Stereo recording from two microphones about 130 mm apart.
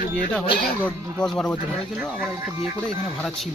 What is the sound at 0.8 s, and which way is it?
Speech, 5° left (ahead or behind).